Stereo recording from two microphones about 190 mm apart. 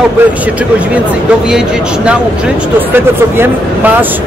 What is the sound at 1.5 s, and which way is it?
Speech, 5° right (ahead or behind).